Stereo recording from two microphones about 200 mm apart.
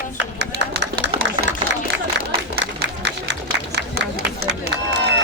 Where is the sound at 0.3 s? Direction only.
55° right (ahead or behind).